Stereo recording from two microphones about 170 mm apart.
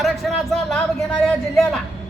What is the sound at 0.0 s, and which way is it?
Speech, centre (ahead or behind).